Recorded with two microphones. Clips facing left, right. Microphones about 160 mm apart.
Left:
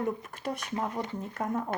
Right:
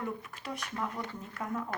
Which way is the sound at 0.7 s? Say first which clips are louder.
Left 3 dB; 20° left (ahead or behind).